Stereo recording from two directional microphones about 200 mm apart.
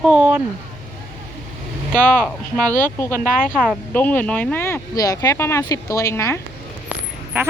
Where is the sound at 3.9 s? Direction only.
10° left (ahead or behind).